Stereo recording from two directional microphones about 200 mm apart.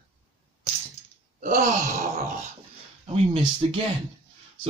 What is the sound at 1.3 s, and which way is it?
Groan, 45° right (ahead or behind).